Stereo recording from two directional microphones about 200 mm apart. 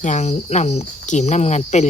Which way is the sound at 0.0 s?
35° left (ahead or behind).